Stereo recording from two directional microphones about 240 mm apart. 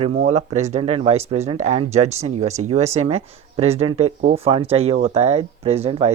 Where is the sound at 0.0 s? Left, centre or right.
Right.